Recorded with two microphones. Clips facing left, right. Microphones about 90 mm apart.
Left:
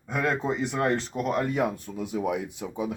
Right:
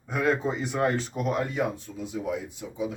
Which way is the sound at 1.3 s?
60° left (ahead or behind).